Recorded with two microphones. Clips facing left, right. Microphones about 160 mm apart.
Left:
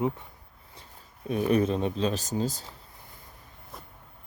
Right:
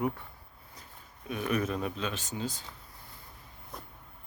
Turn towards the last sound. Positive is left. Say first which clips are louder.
# right 1 dB
turn(degrees=0)  # may be behind; listen again after turning